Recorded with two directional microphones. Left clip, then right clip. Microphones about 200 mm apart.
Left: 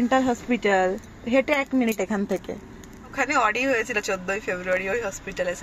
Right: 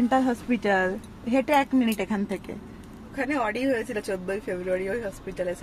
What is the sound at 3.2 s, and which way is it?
Speech, 5° right (ahead or behind).